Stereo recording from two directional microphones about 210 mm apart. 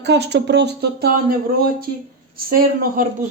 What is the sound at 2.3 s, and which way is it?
Speech, 45° right (ahead or behind).